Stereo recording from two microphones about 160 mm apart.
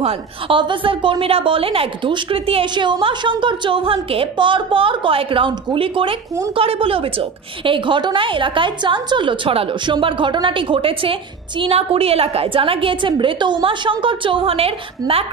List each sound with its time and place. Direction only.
0.0 s a woman's voice: 35° right (ahead or behind)